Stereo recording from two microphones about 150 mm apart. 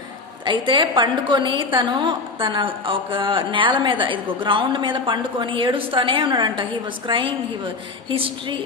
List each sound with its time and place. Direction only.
0.4 s a woman's voice: 30° right (ahead or behind)